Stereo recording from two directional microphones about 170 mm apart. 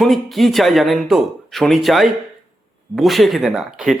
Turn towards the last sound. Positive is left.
turn(degrees=0)  # may be behind; listen again after turning